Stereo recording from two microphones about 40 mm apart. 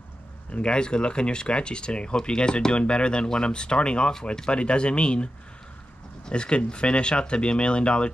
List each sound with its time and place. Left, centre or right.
0.5 s speech: left